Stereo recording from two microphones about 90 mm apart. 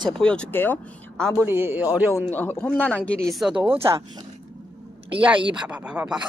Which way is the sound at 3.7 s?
30° right (ahead or behind).